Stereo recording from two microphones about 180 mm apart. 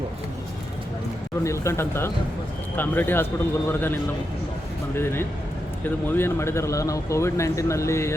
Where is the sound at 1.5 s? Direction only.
15° left (ahead or behind).